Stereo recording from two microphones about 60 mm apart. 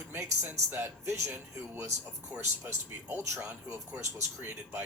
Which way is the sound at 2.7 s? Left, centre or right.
Right.